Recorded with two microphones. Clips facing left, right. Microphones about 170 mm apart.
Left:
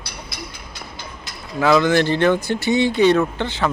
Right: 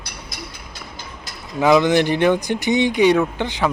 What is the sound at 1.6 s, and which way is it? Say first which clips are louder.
A man's voice: right 1 dB; 15° right (ahead or behind).